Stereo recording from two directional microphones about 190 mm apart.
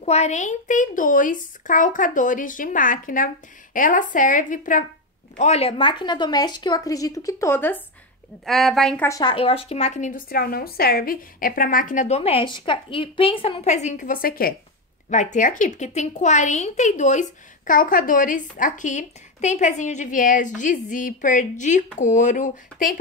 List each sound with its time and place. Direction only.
0.0 s a woman's voice: 35° left (ahead or behind)
5.4 s a woman's voice: 35° left (ahead or behind); by 9.0 s centre (ahead or behind)
9.0 s speech: 15° left (ahead or behind)
9.3 s a woman's voice: 30° left (ahead or behind); by 14.5 s 50° left (ahead or behind)
15.0 s a woman's voice: 40° left (ahead or behind)